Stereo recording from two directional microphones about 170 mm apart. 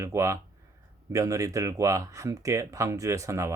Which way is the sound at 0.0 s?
15° right (ahead or behind).